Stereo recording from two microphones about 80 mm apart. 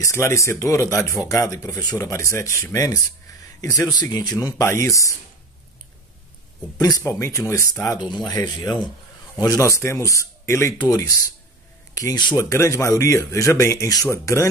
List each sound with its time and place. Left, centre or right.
0.0 s speech: left
4.6 s speech: left
7.1 s speech: left
8.1 s speech: left
9.4 s speech: left
11.9 s a sound: left
12.4 s speech: left